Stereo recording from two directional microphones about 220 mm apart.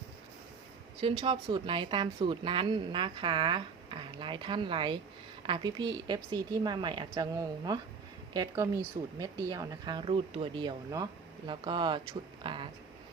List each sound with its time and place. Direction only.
1.2 s a woman's voice: 20° right (ahead or behind)